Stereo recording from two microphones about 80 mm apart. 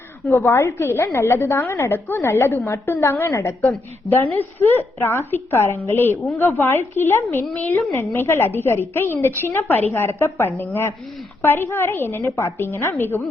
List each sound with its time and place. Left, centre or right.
0.3 s a woman's voice: left
2.8 s a woman's voice: left
7.9 s a woman's voice: left